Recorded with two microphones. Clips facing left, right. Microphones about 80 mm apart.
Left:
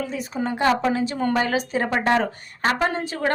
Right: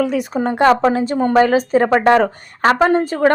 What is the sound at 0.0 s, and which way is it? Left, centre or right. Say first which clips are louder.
Speech: right 11 dB; right.